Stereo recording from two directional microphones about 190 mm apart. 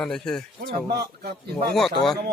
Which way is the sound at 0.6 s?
55° right (ahead or behind).